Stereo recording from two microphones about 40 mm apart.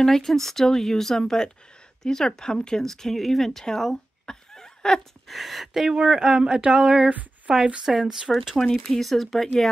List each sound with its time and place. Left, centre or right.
0.0 s speech: centre
5.3 s speech: centre
7.1 s speech: right
7.8 s speech: centre
8.5 s speech: centre